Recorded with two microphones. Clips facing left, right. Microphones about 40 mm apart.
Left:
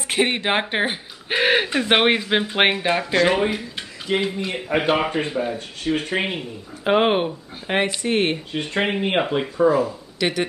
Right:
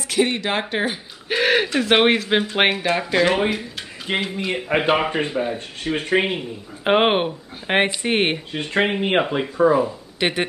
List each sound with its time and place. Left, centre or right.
0.1 s speech: left; by 4.5 s centre
4.7 s a man's voice: right
5.1 s speech: centre
6.8 s speech: right
8.5 s speech: centre
9.6 s speech: centre